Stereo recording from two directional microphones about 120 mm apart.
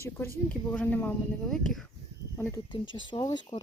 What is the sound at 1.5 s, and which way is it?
Speech, 5° left (ahead or behind).